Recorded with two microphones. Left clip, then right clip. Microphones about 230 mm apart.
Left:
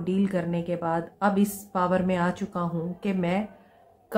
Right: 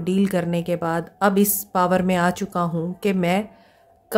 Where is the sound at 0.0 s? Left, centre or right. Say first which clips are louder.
Right 5 dB; right.